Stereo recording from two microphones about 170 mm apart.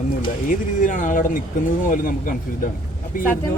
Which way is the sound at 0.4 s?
50° left (ahead or behind).